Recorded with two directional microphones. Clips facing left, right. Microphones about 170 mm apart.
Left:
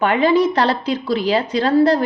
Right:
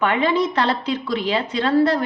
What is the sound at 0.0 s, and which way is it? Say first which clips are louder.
A woman's voice: left 4 dB; 35° left (ahead or behind).